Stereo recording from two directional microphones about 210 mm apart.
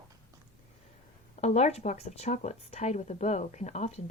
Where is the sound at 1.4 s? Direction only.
30° left (ahead or behind).